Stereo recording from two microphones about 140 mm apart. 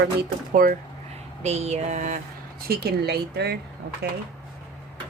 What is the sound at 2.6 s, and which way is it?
Speech, 90° right.